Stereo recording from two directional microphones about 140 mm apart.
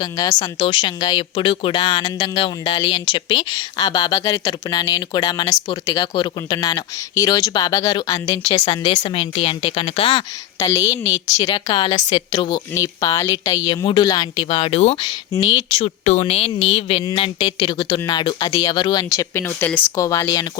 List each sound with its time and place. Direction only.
0.0 s speech: 30° left (ahead or behind)
10.6 s speech: 25° left (ahead or behind); by 14.9 s 45° left (ahead or behind)
15.0 s speech: 30° left (ahead or behind); by 19.8 s 10° left (ahead or behind)
20.0 s speech: 20° left (ahead or behind)